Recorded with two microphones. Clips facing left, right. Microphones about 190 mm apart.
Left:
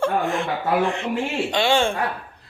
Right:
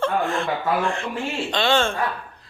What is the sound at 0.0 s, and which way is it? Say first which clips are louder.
A man's voice: left 1 dB; 15° left (ahead or behind).